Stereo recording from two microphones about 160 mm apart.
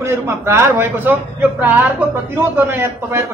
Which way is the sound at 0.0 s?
15° right (ahead or behind).